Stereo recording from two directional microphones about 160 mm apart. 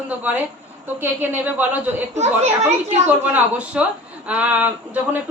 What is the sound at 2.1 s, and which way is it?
Speech, 45° right (ahead or behind).